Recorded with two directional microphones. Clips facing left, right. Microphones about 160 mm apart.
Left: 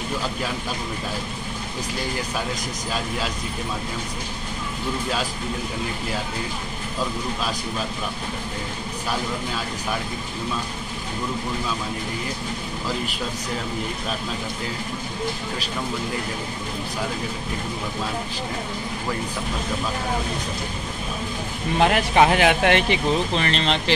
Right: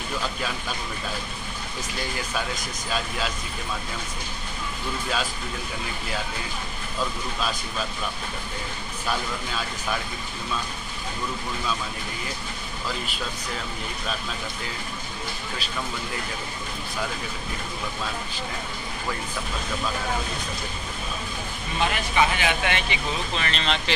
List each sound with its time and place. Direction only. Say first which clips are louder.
21.7 s speech: left 6 dB; 70° left (ahead or behind)
23.3 s speech: left 5 dB; 25° left (ahead or behind)